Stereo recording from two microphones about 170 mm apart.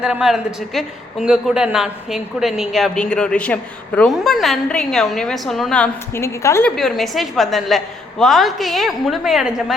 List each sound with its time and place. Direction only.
0.0 s a man's voice: 5° right (ahead or behind); by 6.7 s 15° left (ahead or behind)
6.7 s a man's voice: centre (ahead or behind)